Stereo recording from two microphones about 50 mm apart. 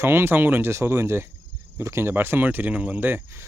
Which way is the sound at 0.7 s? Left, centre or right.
Right.